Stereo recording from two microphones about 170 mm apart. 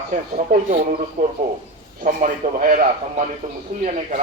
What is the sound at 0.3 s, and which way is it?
Speech, 50° right (ahead or behind).